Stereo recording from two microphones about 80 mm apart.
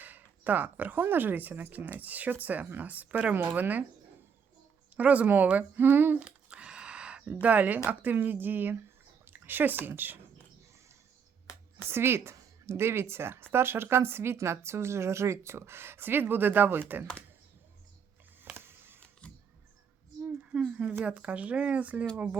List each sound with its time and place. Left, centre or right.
0.0 s speech: right
4.9 s speech: centre
6.1 s a sound: centre
7.4 s speech: right
11.9 s a woman's voice: right
18.5 s music: right
19.2 s a sound: centre
20.2 s a sound: centre
21.0 s speech: centre